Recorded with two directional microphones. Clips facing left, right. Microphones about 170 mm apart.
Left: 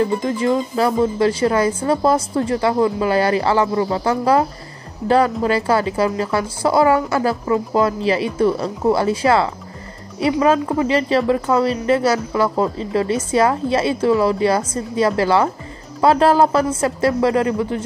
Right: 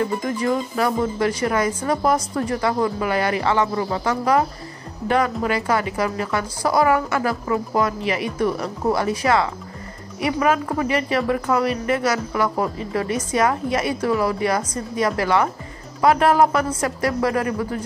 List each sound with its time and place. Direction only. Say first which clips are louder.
0.2 s speech: left 4 dB; 25° left (ahead or behind)